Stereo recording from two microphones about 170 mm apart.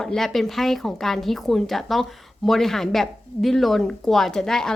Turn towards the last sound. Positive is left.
turn(degrees=5)  # may be behind; listen again after turning